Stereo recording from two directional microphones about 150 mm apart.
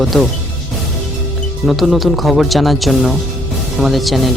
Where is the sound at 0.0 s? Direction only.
Centre (ahead or behind).